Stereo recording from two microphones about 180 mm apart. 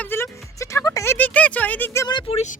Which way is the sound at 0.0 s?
10° left (ahead or behind).